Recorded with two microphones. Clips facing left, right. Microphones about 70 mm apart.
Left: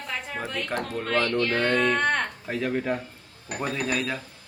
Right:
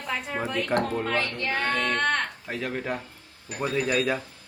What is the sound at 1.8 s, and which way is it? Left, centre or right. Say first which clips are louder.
A man's voice: left 2 dB; centre.